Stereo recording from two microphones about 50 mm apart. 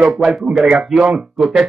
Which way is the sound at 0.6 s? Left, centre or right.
Centre.